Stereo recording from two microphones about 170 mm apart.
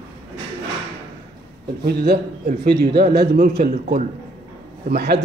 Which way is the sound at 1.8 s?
70° right (ahead or behind).